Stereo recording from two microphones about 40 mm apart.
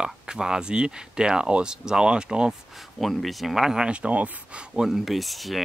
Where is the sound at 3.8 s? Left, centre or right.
Right.